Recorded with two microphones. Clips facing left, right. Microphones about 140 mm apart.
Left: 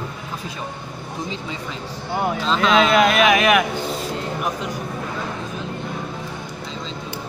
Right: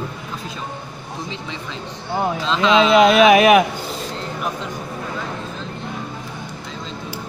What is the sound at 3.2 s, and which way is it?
Speech, 30° right (ahead or behind).